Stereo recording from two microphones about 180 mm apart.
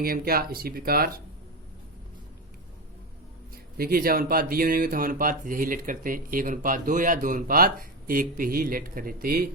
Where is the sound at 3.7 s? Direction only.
55° right (ahead or behind).